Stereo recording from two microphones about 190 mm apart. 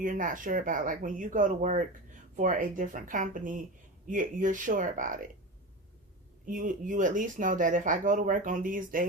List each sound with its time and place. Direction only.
0.0 s speech: 45° right (ahead or behind)
6.4 s speech: 45° right (ahead or behind)